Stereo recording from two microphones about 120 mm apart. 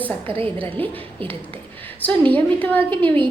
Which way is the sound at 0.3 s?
50° right (ahead or behind).